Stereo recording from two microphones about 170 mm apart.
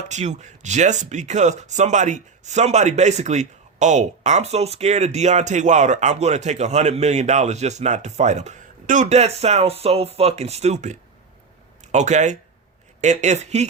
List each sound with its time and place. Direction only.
0.1 s speech: 45° right (ahead or behind)